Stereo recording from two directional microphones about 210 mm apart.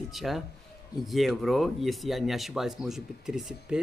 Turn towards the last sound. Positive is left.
turn(degrees=0)  # may be behind; listen again after turning